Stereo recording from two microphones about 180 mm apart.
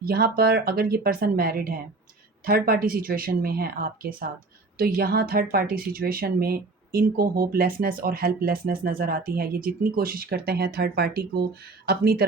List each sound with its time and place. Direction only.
0.0 s speech: 60° right (ahead or behind)